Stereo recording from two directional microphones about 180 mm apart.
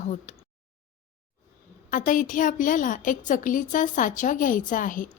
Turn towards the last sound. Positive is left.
turn(degrees=50)  # may be behind; listen again after turning